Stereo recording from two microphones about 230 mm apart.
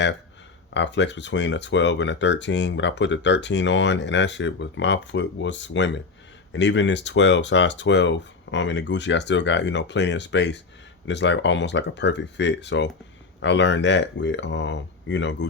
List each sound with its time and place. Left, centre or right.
0.7 s speech: left